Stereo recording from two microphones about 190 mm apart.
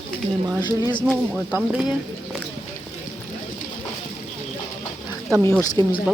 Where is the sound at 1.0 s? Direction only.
5° right (ahead or behind).